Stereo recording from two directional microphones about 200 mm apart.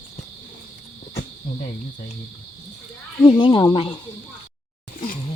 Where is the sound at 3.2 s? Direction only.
20° left (ahead or behind).